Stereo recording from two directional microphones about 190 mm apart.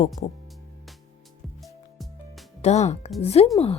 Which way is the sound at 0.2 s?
40° left (ahead or behind).